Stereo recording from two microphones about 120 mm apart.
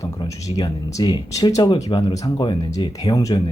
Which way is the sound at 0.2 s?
35° left (ahead or behind).